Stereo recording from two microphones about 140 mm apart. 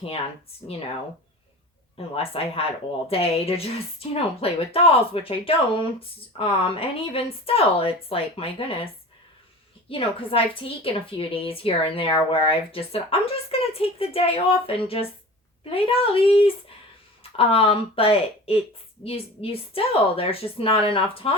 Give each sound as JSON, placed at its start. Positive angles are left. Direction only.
{"t": 2.1, "sound": "a woman's voice", "side_deg": 45}
{"t": 9.9, "sound": "a woman's voice", "side_deg": 40}